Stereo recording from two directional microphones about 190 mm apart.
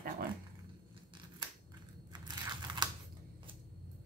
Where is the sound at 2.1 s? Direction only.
20° right (ahead or behind).